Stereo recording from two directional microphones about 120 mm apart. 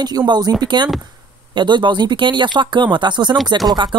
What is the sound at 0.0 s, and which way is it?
Speech, 35° right (ahead or behind).